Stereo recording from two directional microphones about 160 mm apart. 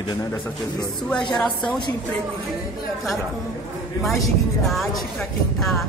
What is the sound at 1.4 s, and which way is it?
Speech, centre (ahead or behind).